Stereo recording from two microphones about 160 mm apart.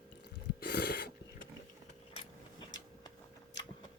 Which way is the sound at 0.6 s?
80° left.